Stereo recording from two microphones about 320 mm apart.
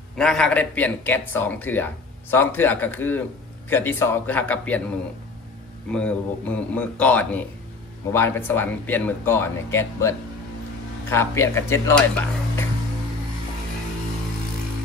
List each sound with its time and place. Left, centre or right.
0.1 s speech: centre
5.9 s speech: centre